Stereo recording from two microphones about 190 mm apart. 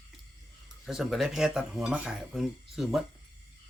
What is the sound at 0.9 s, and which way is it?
Speech, centre (ahead or behind).